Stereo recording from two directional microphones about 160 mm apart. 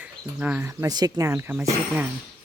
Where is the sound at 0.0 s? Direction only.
10° right (ahead or behind).